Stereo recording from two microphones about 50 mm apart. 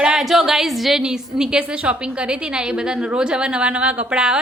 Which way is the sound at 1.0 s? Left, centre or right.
Centre.